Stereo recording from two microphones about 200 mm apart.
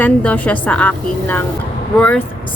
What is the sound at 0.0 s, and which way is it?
Speech, 5° left (ahead or behind).